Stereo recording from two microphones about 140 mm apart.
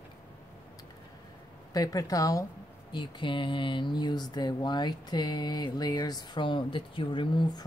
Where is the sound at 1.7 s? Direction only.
25° left (ahead or behind).